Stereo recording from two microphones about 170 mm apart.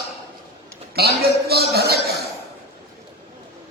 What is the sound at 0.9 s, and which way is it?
A man's voice, 70° right (ahead or behind).